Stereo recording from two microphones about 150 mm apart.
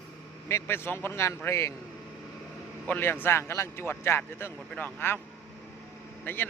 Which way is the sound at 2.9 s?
15° left (ahead or behind).